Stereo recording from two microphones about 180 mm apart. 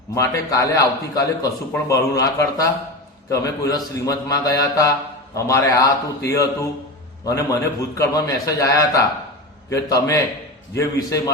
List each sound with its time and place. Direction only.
0.1 s a man's voice: 15° left (ahead or behind)